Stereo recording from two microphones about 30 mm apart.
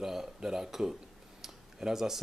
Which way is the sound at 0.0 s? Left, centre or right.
Centre.